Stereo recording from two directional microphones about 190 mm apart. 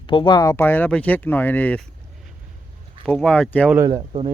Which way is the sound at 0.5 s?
10° left (ahead or behind).